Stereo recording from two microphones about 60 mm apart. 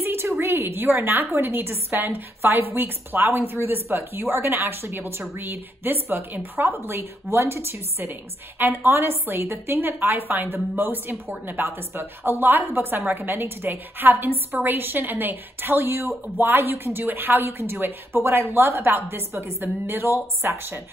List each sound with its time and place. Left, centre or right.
0.0 s a woman's voice: right